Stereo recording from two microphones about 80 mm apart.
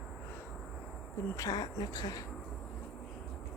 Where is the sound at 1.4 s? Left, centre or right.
Left.